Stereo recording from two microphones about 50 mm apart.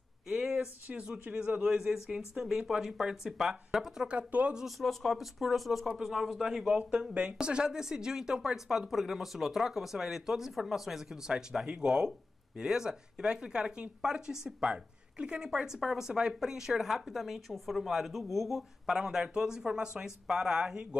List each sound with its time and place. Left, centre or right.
0.3 s a sound: centre
0.8 s speech: right; by 4.1 s centre
4.1 s speech: right
4.6 s speech: centre